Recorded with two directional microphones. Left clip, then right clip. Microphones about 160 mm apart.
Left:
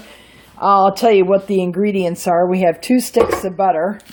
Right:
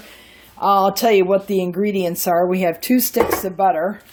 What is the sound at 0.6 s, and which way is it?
A woman's voice, 5° left (ahead or behind).